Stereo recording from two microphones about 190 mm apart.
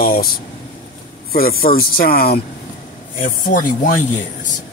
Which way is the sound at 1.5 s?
50° left (ahead or behind).